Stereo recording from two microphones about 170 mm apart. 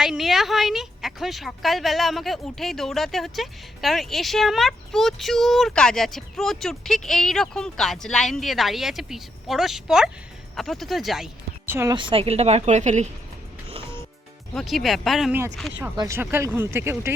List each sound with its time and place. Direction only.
0.0 s a woman's voice: centre (ahead or behind)
11.6 s speech: 15° right (ahead or behind)
11.9 s a woman's voice: 30° right (ahead or behind)
14.5 s a woman's voice: centre (ahead or behind)
16.0 s speech: 15° right (ahead or behind)